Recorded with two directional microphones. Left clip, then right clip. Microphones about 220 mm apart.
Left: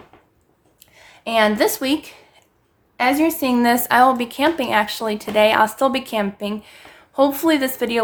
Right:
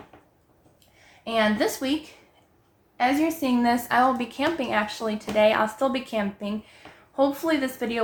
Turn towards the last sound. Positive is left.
turn(degrees=45)  # may be behind; listen again after turning